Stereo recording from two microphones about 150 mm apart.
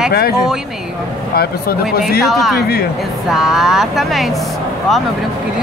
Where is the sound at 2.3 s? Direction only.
Centre (ahead or behind).